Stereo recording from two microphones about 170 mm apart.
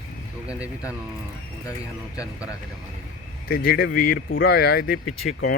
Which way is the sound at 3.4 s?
65° left (ahead or behind).